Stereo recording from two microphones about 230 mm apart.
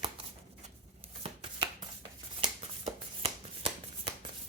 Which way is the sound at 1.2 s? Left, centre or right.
Right.